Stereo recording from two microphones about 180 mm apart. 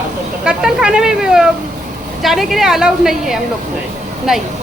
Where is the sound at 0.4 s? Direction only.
5° right (ahead or behind).